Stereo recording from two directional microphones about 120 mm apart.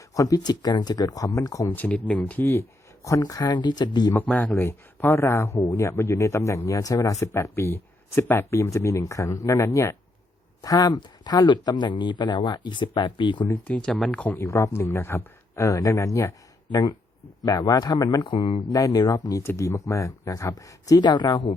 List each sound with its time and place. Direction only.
0.1 s speech: 30° left (ahead or behind)
1.7 s speech: 15° left (ahead or behind); by 4.1 s 35° left (ahead or behind)
4.4 s speech: 15° left (ahead or behind); by 13.5 s 40° left (ahead or behind)
13.5 s speech: 10° left (ahead or behind)
17.4 s speech: 35° left (ahead or behind)
18.7 s speech: 30° left (ahead or behind)